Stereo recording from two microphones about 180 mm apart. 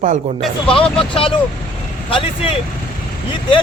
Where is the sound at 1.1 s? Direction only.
30° left (ahead or behind).